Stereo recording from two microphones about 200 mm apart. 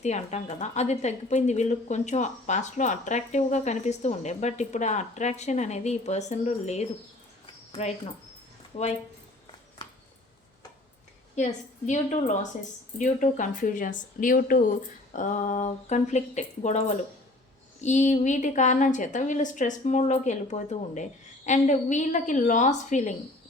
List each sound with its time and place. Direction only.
0.0 s a woman's voice: 35° left (ahead or behind)
9.8 s a sound: 25° left (ahead or behind)
11.3 s a woman's voice: 35° left (ahead or behind)